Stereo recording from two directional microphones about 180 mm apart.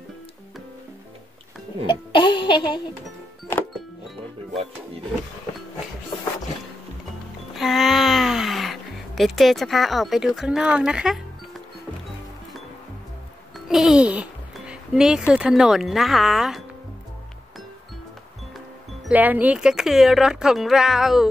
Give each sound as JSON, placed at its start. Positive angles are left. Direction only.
{"t": 1.9, "sound": "music", "side_deg": 25}
{"t": 7.5, "sound": "a sound", "side_deg": 0}
{"t": 13.7, "sound": "speech", "side_deg": 0}
{"t": 19.0, "sound": "speech", "side_deg": -10}